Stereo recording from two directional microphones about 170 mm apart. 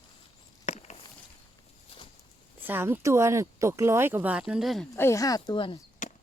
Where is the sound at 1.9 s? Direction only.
35° left (ahead or behind).